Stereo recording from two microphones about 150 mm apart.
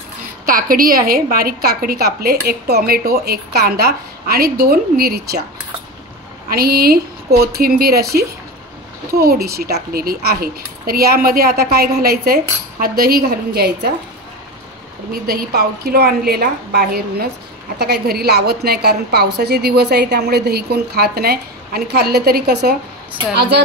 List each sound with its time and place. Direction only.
0.5 s a woman's voice: 70° right (ahead or behind); by 5.4 s 90° right
6.5 s a woman's voice: 90° right
15.2 s a woman's voice: 90° right